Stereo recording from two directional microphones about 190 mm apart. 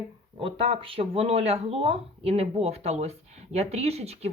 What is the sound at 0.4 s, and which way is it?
Speech, 30° right (ahead or behind).